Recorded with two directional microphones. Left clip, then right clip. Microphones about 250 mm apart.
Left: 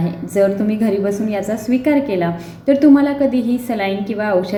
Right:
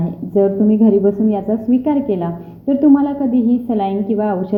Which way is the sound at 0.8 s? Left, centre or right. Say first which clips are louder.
Right 4 dB; centre.